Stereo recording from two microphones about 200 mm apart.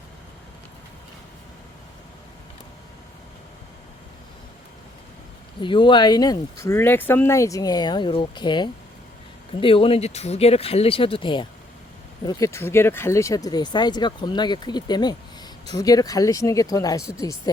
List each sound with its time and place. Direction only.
5.5 s speech: 25° left (ahead or behind)